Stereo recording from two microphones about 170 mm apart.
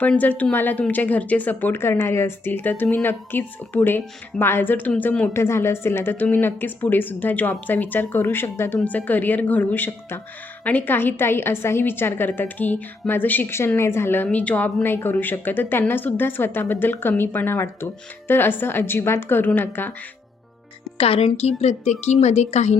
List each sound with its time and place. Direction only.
0.0 s speech: 10° left (ahead or behind)
21.0 s a woman's voice: 35° left (ahead or behind)